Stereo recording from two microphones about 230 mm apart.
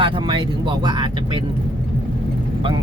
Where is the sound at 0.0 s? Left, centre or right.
Right.